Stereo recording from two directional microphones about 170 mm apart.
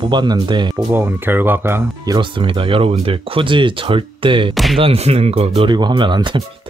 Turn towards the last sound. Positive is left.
turn(degrees=-25)  # may be behind; listen again after turning